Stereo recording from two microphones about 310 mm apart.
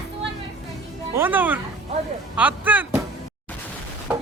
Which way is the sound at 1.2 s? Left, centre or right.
Centre.